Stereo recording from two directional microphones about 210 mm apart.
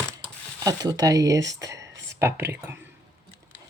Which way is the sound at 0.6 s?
20° right (ahead or behind).